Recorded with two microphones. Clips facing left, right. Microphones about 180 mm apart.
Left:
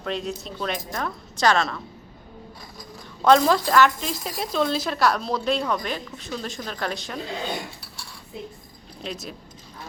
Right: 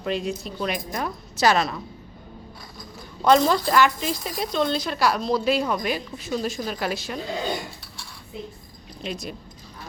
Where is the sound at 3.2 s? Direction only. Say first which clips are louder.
Left 1 dB; centre (ahead or behind).